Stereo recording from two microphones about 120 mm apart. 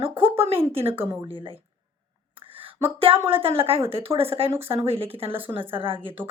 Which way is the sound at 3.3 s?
50° right (ahead or behind).